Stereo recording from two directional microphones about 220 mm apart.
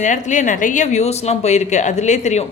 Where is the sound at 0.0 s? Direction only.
35° left (ahead or behind).